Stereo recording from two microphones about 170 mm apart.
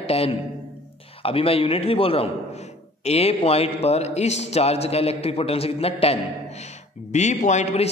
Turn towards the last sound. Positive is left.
turn(degrees=40)  # may be behind; listen again after turning